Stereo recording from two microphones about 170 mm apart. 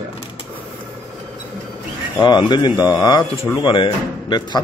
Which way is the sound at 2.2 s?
25° left (ahead or behind).